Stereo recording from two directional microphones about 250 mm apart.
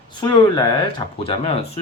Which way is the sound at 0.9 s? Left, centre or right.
Left.